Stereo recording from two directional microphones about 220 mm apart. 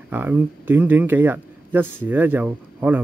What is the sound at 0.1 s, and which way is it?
Speech, 10° right (ahead or behind).